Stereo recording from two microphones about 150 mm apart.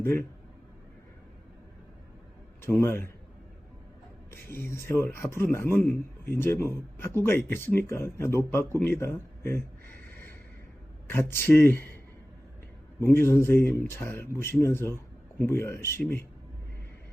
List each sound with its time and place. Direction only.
0.0 s speech: 15° left (ahead or behind)
2.6 s speech: 15° left (ahead or behind)
4.3 s speech: 15° left (ahead or behind)
13.0 s speech: 15° left (ahead or behind)